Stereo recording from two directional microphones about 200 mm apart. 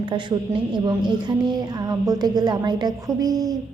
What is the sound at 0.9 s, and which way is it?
Speech, 20° right (ahead or behind).